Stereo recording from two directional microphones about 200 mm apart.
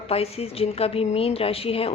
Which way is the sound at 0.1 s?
30° left (ahead or behind).